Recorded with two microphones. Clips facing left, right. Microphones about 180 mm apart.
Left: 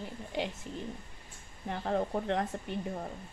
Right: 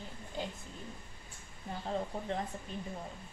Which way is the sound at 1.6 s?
70° left (ahead or behind).